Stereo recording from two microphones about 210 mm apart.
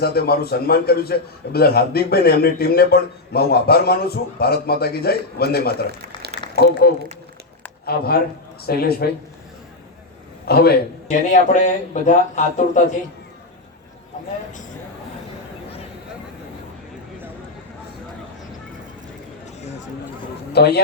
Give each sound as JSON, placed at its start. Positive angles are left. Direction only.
{"t": 0.0, "sound": "a man's voice", "side_deg": 50}
{"t": 10.4, "sound": "a man's voice", "side_deg": 50}
{"t": 20.5, "sound": "a man's voice", "side_deg": 50}